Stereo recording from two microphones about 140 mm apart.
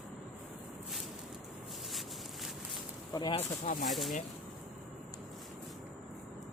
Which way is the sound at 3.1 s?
35° left (ahead or behind).